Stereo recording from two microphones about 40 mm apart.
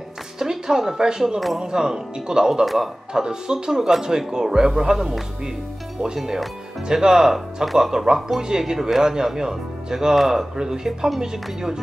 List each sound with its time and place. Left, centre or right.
0.4 s speech: centre
2.6 s a man's voice: centre
3.1 s speech: centre
6.1 s speech: centre